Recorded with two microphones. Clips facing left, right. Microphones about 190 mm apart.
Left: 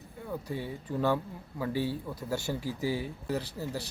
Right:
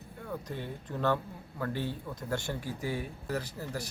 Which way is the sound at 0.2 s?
10° left (ahead or behind).